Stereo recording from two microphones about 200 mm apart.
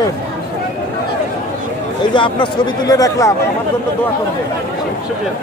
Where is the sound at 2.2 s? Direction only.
25° left (ahead or behind).